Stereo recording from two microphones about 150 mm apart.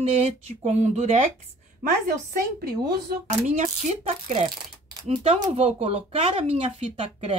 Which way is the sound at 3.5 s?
55° right (ahead or behind).